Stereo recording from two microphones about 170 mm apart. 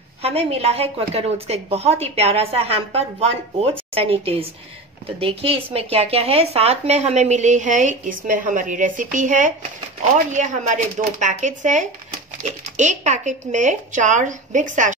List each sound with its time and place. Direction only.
0.2 s speech: 35° right (ahead or behind)